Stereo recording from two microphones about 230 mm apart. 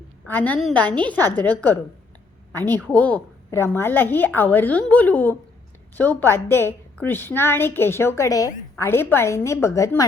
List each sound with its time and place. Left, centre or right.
0.3 s a woman's voice: centre